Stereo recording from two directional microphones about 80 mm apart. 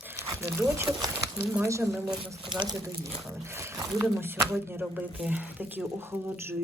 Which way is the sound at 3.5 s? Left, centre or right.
Right.